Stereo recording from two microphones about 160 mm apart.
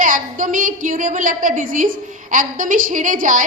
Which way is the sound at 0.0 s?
55° right (ahead or behind).